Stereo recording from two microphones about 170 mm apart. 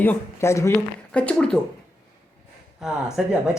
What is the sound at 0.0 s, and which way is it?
Speech, 10° left (ahead or behind).